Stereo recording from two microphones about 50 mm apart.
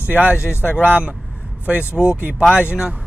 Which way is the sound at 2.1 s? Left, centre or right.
Right.